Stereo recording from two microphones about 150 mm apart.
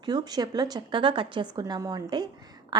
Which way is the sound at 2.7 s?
30° right (ahead or behind).